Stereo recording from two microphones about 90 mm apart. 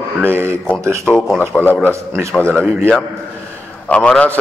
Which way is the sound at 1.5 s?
20° left (ahead or behind).